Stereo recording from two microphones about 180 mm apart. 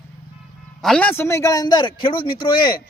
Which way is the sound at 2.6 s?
55° left (ahead or behind).